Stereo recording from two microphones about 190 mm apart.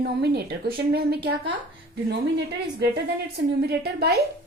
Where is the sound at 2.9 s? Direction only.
60° right (ahead or behind).